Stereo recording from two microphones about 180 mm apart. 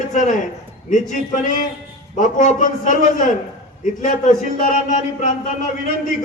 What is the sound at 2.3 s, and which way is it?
A man's voice, 45° left (ahead or behind).